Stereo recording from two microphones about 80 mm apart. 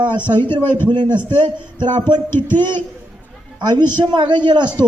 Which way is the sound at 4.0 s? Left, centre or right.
Right.